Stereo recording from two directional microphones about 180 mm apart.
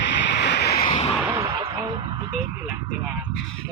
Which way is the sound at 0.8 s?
30° left (ahead or behind).